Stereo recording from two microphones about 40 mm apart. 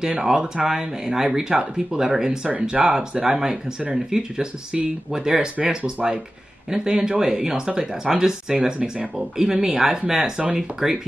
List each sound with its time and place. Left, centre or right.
0.2 s speech: centre